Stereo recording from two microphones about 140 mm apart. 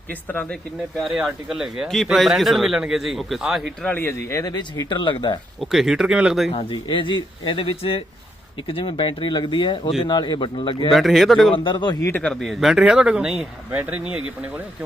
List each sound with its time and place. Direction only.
0.9 s speech: centre (ahead or behind)
3.8 s speech: 15° left (ahead or behind); by 5.4 s 35° left (ahead or behind)
5.5 s speech: centre (ahead or behind)
6.5 s speech: 45° left (ahead or behind)
10.9 s speech: centre (ahead or behind)
11.5 s speech: 35° left (ahead or behind)
12.0 s speech: 10° left (ahead or behind); by 14.2 s 10° right (ahead or behind)